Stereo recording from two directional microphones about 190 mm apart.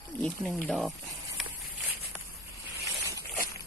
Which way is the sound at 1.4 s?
Centre (ahead or behind).